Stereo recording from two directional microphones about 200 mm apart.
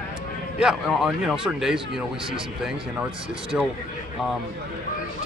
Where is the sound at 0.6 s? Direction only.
5° right (ahead or behind).